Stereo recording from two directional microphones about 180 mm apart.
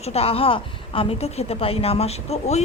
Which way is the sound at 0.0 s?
35° left (ahead or behind).